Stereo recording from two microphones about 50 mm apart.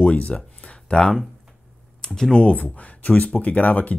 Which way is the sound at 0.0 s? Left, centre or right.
Left.